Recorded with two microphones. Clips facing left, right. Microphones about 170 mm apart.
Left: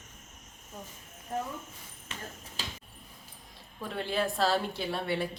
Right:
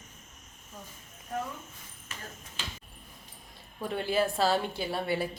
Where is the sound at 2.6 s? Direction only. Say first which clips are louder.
Left 1 dB; 35° left (ahead or behind).